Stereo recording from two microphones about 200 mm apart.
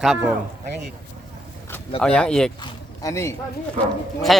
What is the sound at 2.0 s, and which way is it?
Speech, 5° left (ahead or behind).